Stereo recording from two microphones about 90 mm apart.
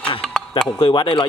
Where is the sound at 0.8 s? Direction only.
80° left.